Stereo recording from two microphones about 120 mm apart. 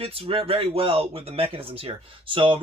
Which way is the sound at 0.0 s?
55° right (ahead or behind).